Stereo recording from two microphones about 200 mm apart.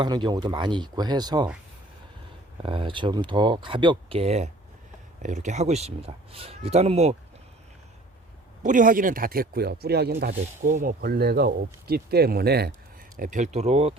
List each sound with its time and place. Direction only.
0.0 s speech: 20° right (ahead or behind)
2.6 s speech: 25° right (ahead or behind)
8.6 s speech: 40° right (ahead or behind)
13.1 s speech: 40° right (ahead or behind)